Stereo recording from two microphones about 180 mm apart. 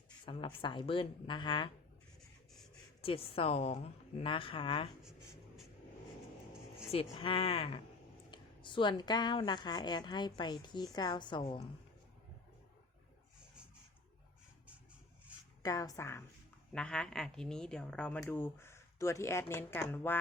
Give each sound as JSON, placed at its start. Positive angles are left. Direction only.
{"t": 0.3, "sound": "speech", "side_deg": 25}
{"t": 3.0, "sound": "speech", "side_deg": 30}
{"t": 6.9, "sound": "speech", "side_deg": 30}
{"t": 15.6, "sound": "speech", "side_deg": 20}
{"t": 16.7, "sound": "speech", "side_deg": 5}